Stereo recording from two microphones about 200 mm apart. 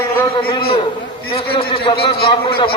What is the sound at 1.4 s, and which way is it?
A man's voice, 25° left (ahead or behind).